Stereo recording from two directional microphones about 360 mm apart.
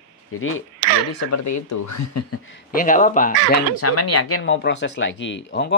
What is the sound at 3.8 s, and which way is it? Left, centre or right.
Speech, left.